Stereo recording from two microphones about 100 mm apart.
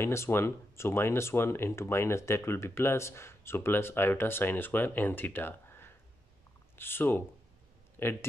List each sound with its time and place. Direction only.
0.0 s speech: 25° left (ahead or behind)